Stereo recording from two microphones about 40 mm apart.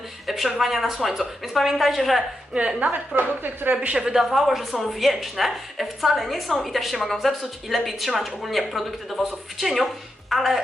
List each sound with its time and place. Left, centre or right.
0.3 s a woman's voice: centre
2.5 s a woman's voice: right
3.2 s speech: right
3.9 s a woman's voice: centre